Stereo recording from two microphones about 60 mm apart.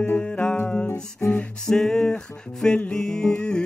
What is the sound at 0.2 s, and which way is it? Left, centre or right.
Music, centre.